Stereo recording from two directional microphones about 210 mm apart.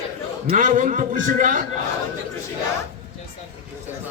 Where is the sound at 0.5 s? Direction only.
40° right (ahead or behind).